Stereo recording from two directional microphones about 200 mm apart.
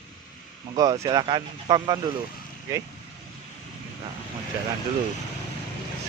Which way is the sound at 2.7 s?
15° right (ahead or behind).